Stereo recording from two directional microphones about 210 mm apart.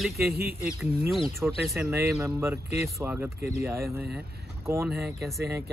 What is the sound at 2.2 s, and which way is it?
A woman's voice, 10° right (ahead or behind).